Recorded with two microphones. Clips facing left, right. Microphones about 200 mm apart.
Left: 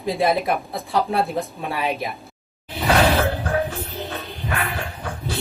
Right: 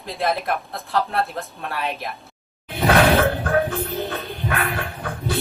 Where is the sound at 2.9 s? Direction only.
55° right (ahead or behind).